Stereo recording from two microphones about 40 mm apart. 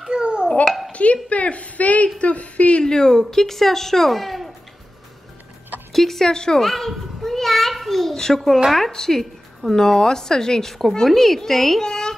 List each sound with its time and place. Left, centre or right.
0.0 s babbling: right
0.7 s a sound: centre
1.3 s a woman's voice: left
2.8 s a woman's voice: centre
5.9 s a woman's voice: centre
6.3 s a woman's voice: centre
6.6 s children playing: centre
8.9 s a woman's voice: centre
11.8 s a sound: centre